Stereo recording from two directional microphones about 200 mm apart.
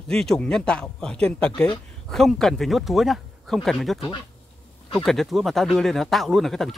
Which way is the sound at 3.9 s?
25° left (ahead or behind).